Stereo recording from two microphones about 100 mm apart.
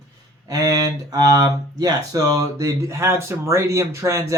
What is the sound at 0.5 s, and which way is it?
Speech, 40° right (ahead or behind).